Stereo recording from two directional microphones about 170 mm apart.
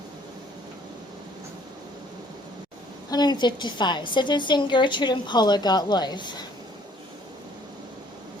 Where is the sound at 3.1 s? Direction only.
25° left (ahead or behind).